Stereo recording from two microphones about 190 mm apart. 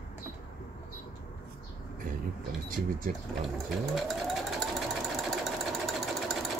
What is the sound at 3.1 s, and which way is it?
Speech, 45° right (ahead or behind).